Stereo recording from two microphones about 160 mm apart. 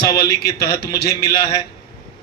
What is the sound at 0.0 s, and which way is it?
Speech, 80° left.